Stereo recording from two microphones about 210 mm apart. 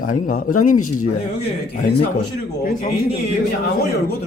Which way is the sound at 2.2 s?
45° left (ahead or behind).